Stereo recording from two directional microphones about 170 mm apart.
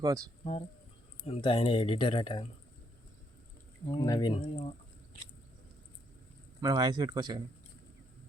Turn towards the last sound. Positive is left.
turn(degrees=-25)  # may be behind; listen again after turning